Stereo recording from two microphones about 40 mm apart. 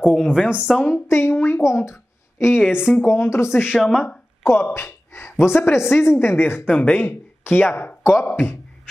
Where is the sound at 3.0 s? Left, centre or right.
Left.